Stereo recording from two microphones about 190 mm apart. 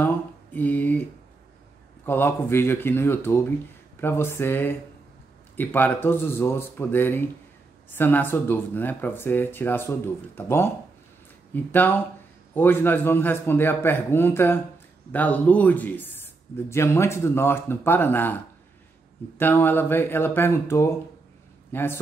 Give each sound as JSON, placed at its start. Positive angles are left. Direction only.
{"t": 0.0, "sound": "mantra", "side_deg": 10}
{"t": 2.0, "sound": "speech", "side_deg": 10}